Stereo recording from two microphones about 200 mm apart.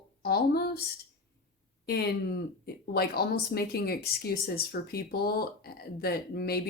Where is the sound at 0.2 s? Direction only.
50° left (ahead or behind).